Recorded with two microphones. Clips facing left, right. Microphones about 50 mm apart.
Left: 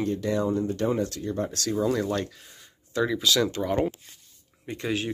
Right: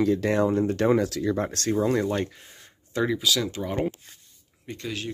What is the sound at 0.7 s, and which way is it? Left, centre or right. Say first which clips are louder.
Speech: right 4 dB; right.